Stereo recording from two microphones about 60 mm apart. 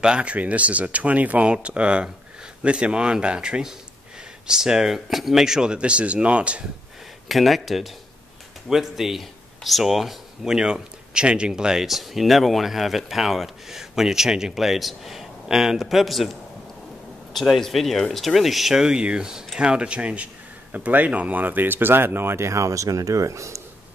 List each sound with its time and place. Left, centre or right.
0.0 s speech: centre
7.2 s speech: centre; by 23.6 s right